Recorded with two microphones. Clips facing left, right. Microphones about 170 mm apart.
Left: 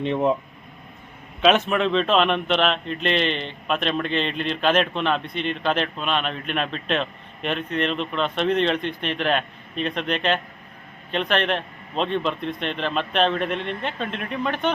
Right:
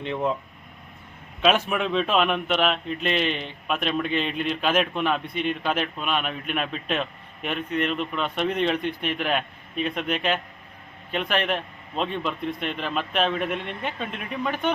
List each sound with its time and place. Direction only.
0.0 s speech: 20° left (ahead or behind)
1.4 s a man's voice: 5° right (ahead or behind)